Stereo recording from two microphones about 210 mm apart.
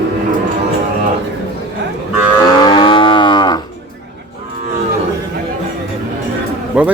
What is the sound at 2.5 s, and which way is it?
Moo, 20° left (ahead or behind).